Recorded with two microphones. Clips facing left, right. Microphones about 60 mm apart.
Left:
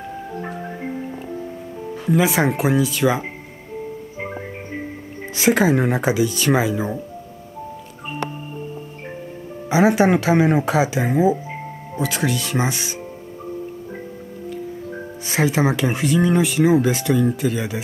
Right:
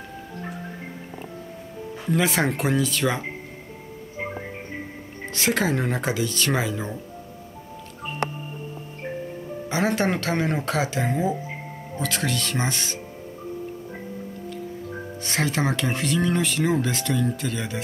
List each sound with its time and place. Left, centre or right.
0.4 s marimba: centre
2.0 s speech: centre
5.3 s speech: centre
9.7 s speech: centre
14.5 s speech: centre